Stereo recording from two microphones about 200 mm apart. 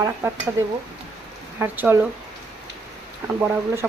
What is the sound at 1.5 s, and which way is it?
Speech, 10° right (ahead or behind).